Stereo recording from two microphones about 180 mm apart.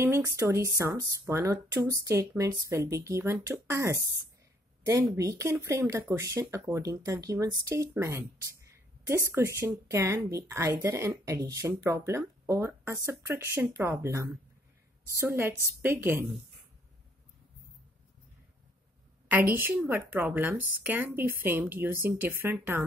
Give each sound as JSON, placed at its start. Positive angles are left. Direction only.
{"t": 0.0, "sound": "speech", "side_deg": -15}
{"t": 19.5, "sound": "speech", "side_deg": -10}